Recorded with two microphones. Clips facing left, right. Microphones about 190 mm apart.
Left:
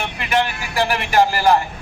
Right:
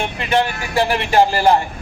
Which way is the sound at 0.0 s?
25° right (ahead or behind).